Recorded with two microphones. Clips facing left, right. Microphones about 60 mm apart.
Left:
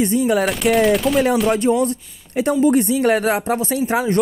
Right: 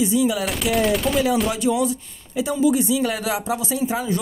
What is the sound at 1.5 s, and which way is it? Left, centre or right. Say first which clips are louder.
Speech: left 4 dB; left.